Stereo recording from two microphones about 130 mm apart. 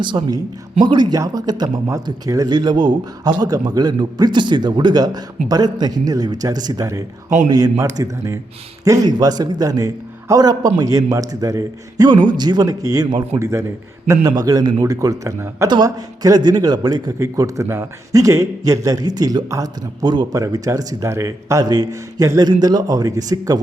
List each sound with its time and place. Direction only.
0.0 s a man's voice: 35° right (ahead or behind)